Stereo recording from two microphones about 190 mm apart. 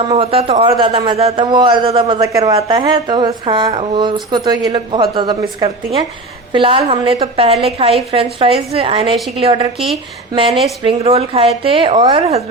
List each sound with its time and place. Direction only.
0.1 s a woman's voice: 30° right (ahead or behind)